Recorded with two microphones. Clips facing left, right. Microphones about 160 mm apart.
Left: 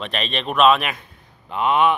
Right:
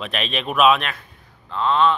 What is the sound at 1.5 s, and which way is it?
Speech, 15° left (ahead or behind).